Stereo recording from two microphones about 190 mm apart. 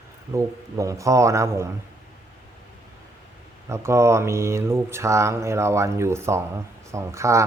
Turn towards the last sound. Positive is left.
turn(degrees=-15)  # may be behind; listen again after turning